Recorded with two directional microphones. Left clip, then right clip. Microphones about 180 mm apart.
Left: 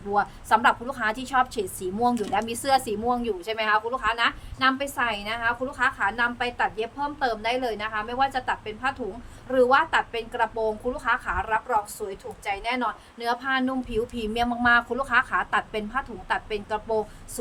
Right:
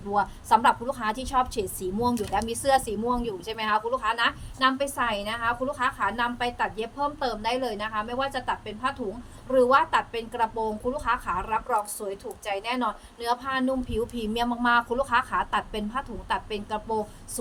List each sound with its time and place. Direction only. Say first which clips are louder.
0.1 s a woman's voice: even; 20° left (ahead or behind)